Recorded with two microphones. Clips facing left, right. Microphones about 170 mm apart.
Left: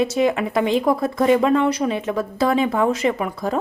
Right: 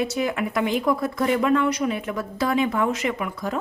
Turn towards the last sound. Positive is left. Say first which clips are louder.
# left 5 dB
turn(degrees=30)  # may be behind; listen again after turning